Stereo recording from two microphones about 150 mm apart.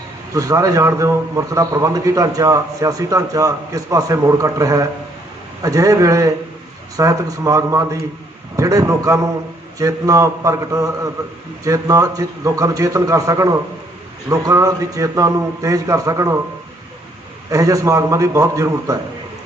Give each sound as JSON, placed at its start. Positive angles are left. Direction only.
{"t": 0.3, "sound": "a man's voice", "side_deg": -20}
{"t": 17.5, "sound": "a man's voice", "side_deg": -20}